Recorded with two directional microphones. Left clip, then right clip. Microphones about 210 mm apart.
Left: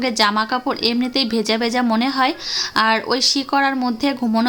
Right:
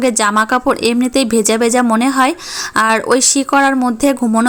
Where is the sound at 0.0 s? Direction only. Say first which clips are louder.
Right 5 dB; 30° right (ahead or behind).